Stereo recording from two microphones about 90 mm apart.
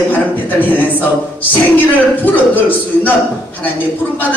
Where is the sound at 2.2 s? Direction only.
20° left (ahead or behind).